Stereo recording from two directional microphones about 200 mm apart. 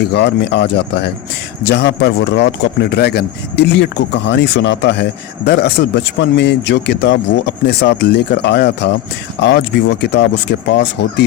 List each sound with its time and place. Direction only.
0.0 s speech: 60° left (ahead or behind)